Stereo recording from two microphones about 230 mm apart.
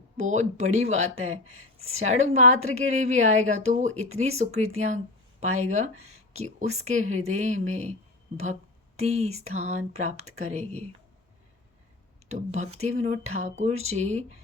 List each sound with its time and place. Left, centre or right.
0.2 s a woman's voice: right
9.0 s a woman's voice: right
12.3 s a woman's voice: right